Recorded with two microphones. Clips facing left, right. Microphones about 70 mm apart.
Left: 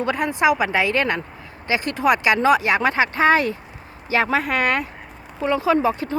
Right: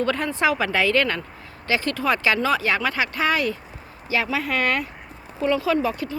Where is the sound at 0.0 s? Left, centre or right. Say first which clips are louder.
Left 2 dB; centre.